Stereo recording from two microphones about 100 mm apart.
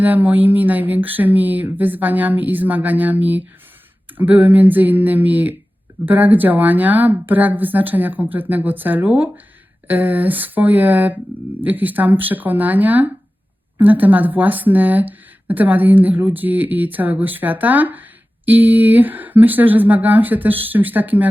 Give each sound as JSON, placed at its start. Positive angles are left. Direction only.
{"t": 0.0, "sound": "speech", "side_deg": -15}